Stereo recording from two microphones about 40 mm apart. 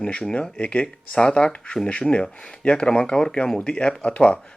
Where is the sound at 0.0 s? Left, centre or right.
Left.